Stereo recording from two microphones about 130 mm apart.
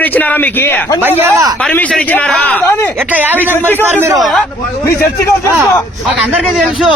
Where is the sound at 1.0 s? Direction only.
15° right (ahead or behind).